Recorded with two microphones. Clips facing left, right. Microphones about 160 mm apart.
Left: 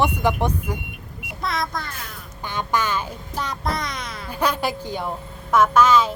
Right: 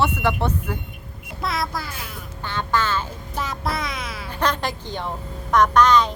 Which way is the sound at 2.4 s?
15° left (ahead or behind).